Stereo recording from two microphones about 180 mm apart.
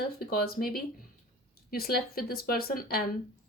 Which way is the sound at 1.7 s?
55° left (ahead or behind).